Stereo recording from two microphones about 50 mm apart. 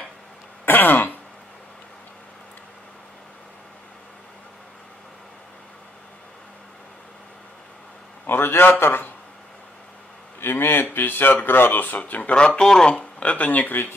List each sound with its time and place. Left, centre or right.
0.7 s throat clearing: left
8.3 s a man's voice: left
10.4 s speech: left
12.2 s speech: left